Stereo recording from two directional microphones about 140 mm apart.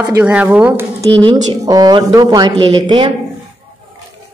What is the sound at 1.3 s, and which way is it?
Speech, 25° right (ahead or behind).